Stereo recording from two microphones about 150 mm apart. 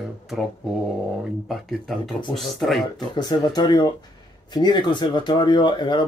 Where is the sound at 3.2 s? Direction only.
30° left (ahead or behind).